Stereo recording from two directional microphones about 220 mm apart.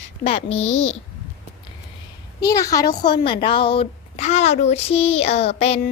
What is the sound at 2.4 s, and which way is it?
A woman's voice, 15° left (ahead or behind).